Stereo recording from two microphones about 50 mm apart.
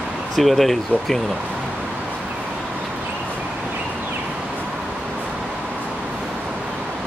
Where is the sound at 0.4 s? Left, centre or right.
Centre.